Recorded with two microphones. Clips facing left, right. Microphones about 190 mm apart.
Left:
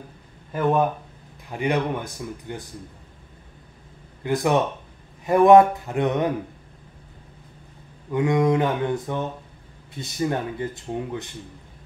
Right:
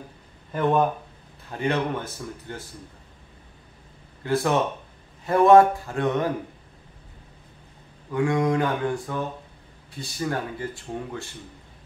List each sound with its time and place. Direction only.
0.5 s a man's voice: 5° left (ahead or behind)
4.2 s speech: 15° left (ahead or behind)
8.1 s speech: 20° left (ahead or behind)